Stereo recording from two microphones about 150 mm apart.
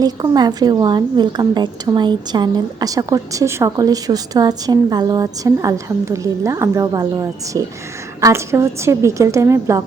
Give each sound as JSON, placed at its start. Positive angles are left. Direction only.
{"t": 0.0, "sound": "a woman's voice", "side_deg": -25}